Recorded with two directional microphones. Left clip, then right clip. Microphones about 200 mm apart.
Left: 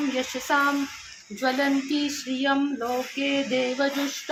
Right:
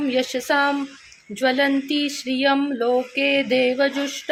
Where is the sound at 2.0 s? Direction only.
45° right (ahead or behind).